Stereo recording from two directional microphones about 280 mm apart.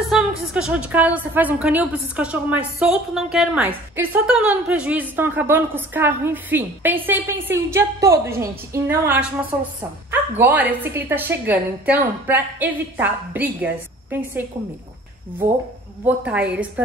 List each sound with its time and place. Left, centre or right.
0.1 s a woman's voice: centre
16.1 s a woman's voice: centre